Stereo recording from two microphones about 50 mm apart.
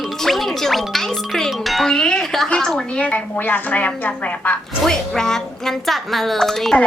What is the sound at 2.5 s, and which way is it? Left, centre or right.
Speech, centre.